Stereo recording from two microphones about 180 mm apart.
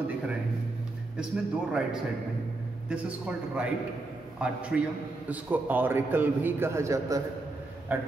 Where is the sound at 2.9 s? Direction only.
5° right (ahead or behind).